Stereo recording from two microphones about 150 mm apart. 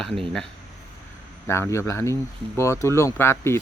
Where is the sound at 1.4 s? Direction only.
15° left (ahead or behind).